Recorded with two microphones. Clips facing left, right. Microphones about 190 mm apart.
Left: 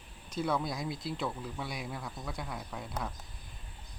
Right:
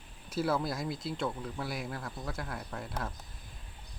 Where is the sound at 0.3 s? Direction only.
5° right (ahead or behind).